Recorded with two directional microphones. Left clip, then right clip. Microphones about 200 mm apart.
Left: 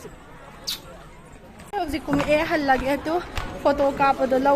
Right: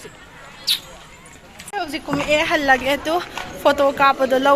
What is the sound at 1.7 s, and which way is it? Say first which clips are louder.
Speech: right 1 dB; 20° left (ahead or behind).